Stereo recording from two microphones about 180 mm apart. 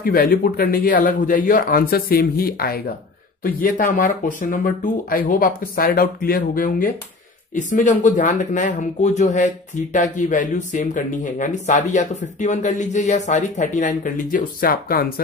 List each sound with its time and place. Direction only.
0.0 s speech: 55° left (ahead or behind)